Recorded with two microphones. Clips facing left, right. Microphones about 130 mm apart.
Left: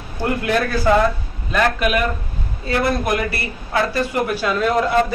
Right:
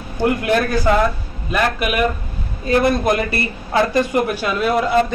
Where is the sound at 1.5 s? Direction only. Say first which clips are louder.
Left 1 dB; 10° right (ahead or behind).